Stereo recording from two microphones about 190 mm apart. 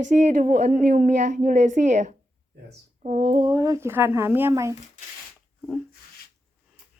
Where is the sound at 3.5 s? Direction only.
20° right (ahead or behind).